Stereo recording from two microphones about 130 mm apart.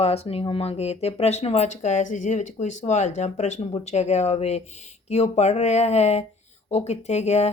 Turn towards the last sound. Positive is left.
turn(degrees=60)  # may be behind; listen again after turning